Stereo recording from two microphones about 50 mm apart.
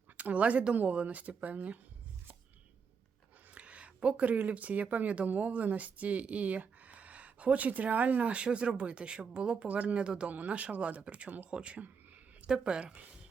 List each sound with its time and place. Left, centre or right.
0.2 s speech: right
3.5 s speech: right
11.5 s a sound: right
12.5 s speech: centre